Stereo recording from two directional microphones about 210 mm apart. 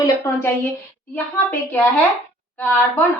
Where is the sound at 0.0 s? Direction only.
10° left (ahead or behind).